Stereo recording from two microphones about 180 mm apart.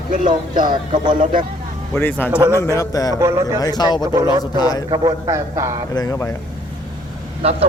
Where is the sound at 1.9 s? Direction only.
10° left (ahead or behind).